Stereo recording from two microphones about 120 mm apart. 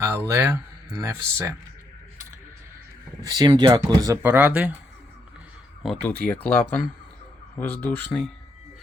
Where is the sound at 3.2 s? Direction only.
30° right (ahead or behind).